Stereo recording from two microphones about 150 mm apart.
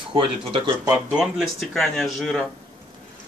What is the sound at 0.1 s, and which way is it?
Speech, 35° right (ahead or behind).